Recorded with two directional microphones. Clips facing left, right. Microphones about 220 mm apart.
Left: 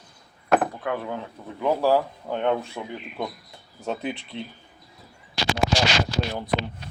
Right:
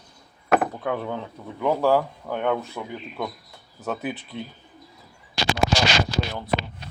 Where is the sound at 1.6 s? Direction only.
15° left (ahead or behind).